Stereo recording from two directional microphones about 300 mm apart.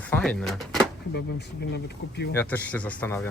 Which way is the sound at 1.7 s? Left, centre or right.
Left.